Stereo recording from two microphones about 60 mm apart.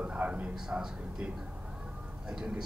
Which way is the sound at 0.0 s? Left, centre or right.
Centre.